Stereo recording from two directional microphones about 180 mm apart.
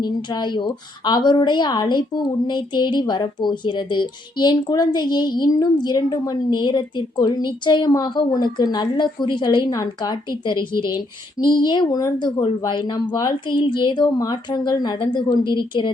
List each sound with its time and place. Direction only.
0.0 s a woman's voice: 25° left (ahead or behind)